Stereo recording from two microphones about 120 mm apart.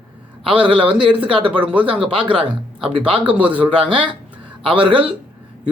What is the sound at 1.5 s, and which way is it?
Speech, 10° right (ahead or behind).